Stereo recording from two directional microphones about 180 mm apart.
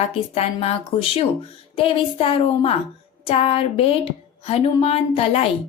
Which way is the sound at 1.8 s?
30° left (ahead or behind).